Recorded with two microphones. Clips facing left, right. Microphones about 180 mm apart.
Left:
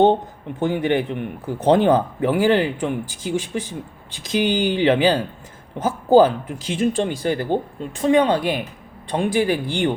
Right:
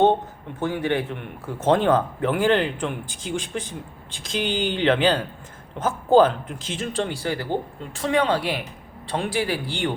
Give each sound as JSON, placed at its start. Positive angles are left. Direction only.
{"t": 0.6, "sound": "speech", "side_deg": 15}